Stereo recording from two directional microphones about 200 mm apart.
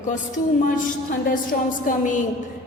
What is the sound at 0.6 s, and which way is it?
A woman's voice, 40° left (ahead or behind).